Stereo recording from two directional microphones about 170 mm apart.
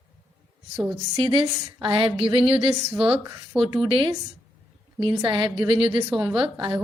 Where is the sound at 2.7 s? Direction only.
5° right (ahead or behind).